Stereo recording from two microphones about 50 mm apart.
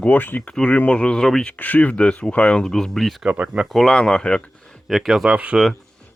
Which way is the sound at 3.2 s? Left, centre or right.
Right.